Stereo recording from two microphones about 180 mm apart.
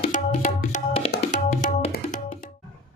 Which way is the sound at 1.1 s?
60° left (ahead or behind).